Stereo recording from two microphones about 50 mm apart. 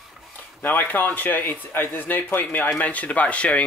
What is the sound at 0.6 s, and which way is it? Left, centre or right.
Speech, left.